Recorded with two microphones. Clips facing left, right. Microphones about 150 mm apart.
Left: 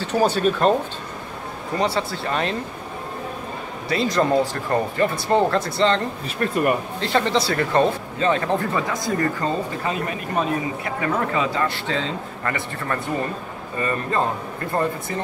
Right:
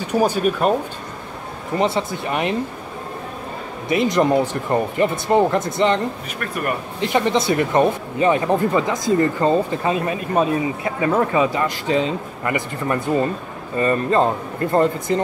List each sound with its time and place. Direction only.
0.0 s speech: 10° right (ahead or behind)
1.8 s a man's voice: 20° right (ahead or behind)
3.9 s speech: 20° right (ahead or behind)
6.4 s speech: 20° left (ahead or behind)
7.0 s a man's voice: 15° right (ahead or behind)